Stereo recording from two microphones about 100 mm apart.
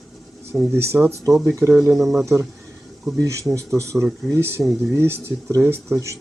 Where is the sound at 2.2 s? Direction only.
25° right (ahead or behind).